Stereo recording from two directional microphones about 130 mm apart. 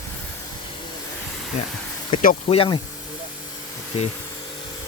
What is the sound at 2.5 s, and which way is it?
Speech, 45° left (ahead or behind).